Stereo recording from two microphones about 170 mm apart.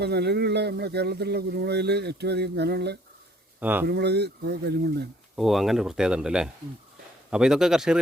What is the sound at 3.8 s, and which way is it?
Speech, 75° right (ahead or behind).